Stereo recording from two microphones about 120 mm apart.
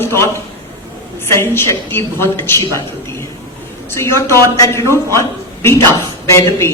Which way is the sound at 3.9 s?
25° left (ahead or behind).